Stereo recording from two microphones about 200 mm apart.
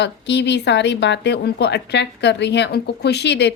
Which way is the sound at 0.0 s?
60° left (ahead or behind).